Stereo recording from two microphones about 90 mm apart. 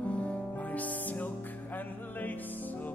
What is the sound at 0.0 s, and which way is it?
Music, 15° left (ahead or behind).